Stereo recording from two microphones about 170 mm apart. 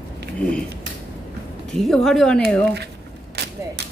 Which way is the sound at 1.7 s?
Centre (ahead or behind).